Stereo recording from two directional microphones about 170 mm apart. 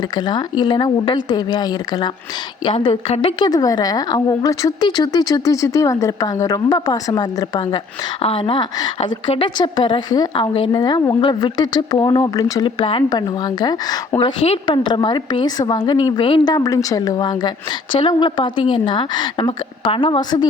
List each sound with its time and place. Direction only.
0.2 s a woman's voice: 25° left (ahead or behind)
8.2 s a woman's voice: 30° left (ahead or behind)